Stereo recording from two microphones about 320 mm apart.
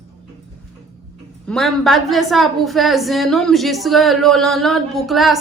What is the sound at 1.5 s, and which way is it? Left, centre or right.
A woman's voice, centre.